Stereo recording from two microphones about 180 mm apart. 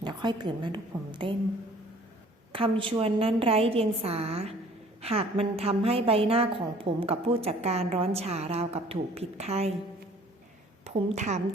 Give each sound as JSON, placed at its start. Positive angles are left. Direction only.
{"t": 0.0, "sound": "a woman's voice", "side_deg": -25}
{"t": 2.5, "sound": "a woman's voice", "side_deg": -30}
{"t": 10.8, "sound": "a woman's voice", "side_deg": -40}